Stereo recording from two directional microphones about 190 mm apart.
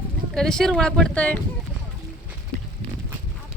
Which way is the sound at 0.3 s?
5° left (ahead or behind).